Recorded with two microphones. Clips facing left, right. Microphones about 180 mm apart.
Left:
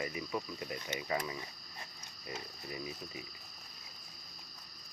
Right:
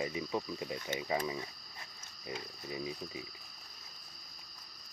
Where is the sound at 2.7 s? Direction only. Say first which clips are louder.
Right 3 dB; 20° right (ahead or behind).